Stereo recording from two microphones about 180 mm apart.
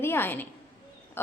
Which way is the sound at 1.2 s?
15° left (ahead or behind).